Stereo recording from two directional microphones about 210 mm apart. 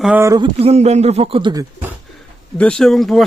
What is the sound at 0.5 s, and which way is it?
Speech, 30° right (ahead or behind).